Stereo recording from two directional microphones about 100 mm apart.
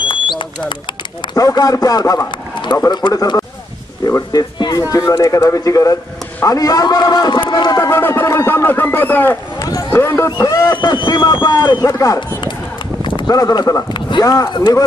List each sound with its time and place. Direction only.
0.0 s bird: 55° left (ahead or behind)
1.3 s speech: 35° left (ahead or behind)
4.7 s speech: 30° left (ahead or behind)
7.9 s speech: 25° left (ahead or behind)
9.6 s run: 35° left (ahead or behind)
9.9 s speech: 25° left (ahead or behind)
10.3 s speech: 40° left (ahead or behind)
10.8 s speech: 50° left (ahead or behind)
11.8 s speech: 35° left (ahead or behind)
13.3 s speech: 35° left (ahead or behind)